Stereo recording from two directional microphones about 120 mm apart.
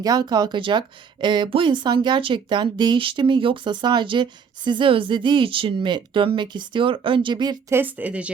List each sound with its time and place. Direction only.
0.0 s speech: 35° right (ahead or behind)
7.7 s speech: 15° right (ahead or behind)